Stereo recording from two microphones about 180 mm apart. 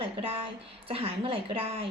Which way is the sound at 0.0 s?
30° right (ahead or behind).